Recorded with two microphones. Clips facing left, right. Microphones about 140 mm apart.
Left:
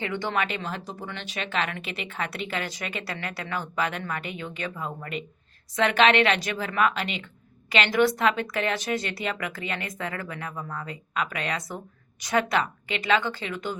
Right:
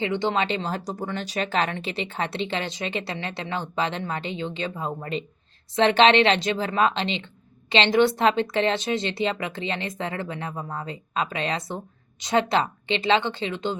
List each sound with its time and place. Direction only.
0.0 s speech: 20° right (ahead or behind)